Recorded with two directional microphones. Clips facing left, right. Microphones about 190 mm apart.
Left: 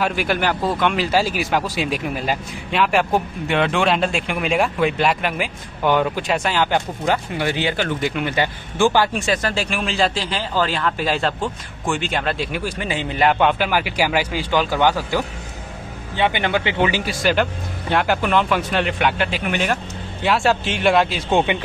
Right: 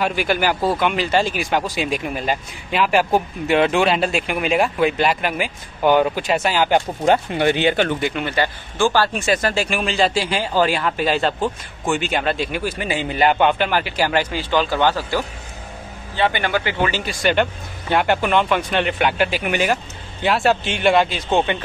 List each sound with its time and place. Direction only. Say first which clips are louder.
0.0 s speech: right 1 dB; centre (ahead or behind)
6.7 s speech: right 4 dB; 25° right (ahead or behind)
8.0 s speech: even; 5° left (ahead or behind)
8.3 s speech: even; 15° left (ahead or behind)
9.2 s speech: right 2 dB; 5° right (ahead or behind)
10.2 s speech: right 3 dB; 10° right (ahead or behind); by 17.0 s 20° left (ahead or behind)
17.0 s speech: even; 5° left (ahead or behind)
21.5 s speech: left 1 dB; 15° left (ahead or behind)